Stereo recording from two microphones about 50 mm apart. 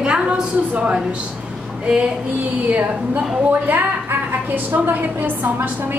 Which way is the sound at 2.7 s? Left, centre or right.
Right.